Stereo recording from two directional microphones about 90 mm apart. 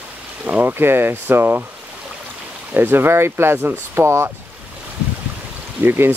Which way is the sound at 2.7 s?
25° right (ahead or behind).